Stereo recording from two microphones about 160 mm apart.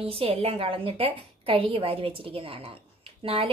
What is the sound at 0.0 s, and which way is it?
A woman's voice, 35° right (ahead or behind).